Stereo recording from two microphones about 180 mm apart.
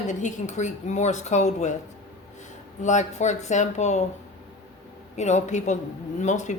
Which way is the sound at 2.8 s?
40° left (ahead or behind).